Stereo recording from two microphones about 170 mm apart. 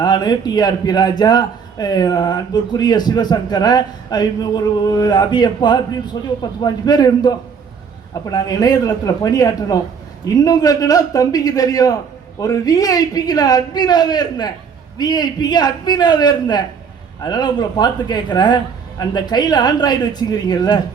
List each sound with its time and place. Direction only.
0.0 s a man's voice: 25° left (ahead or behind)